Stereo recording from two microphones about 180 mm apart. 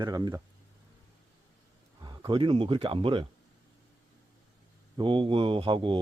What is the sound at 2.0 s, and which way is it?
Speech, 25° right (ahead or behind).